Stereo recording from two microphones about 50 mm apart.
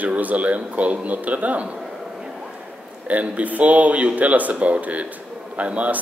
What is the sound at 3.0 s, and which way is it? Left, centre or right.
Speech, right.